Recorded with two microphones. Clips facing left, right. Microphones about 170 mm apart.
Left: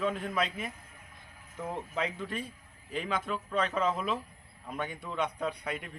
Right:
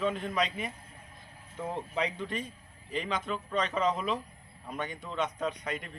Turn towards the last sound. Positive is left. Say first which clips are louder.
# right 1 dB
turn(degrees=10)  # may be behind; listen again after turning